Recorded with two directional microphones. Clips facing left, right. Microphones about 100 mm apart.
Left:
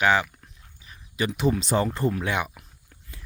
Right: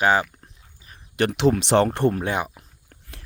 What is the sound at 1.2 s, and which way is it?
Speech, 70° right (ahead or behind).